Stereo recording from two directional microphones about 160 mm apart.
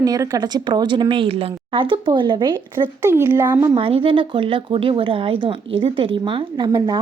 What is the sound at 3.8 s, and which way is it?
Speech, 35° right (ahead or behind).